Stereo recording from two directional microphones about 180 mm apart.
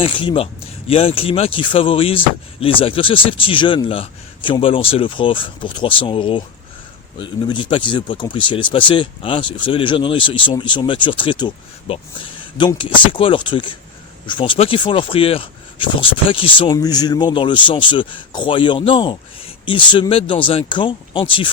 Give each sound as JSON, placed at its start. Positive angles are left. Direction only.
{"t": 0.0, "sound": "speech", "side_deg": 30}